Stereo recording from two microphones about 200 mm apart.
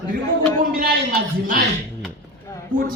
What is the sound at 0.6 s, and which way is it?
A man's voice, 45° right (ahead or behind).